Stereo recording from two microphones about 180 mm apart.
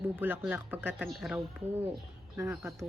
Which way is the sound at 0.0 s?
10° right (ahead or behind).